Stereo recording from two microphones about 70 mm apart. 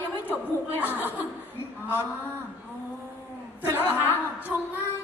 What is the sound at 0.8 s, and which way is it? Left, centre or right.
Speech, left.